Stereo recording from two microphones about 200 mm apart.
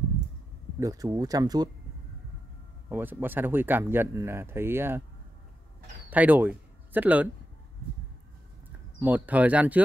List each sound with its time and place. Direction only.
0.7 s speech: 15° right (ahead or behind)
2.9 s speech: 10° right (ahead or behind)
6.0 s speech: 10° right (ahead or behind)
9.0 s speech: 10° right (ahead or behind)